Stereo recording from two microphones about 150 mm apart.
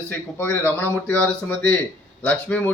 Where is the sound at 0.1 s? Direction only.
15° left (ahead or behind).